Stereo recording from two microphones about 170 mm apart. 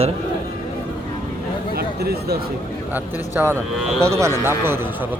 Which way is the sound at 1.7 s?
65° right (ahead or behind).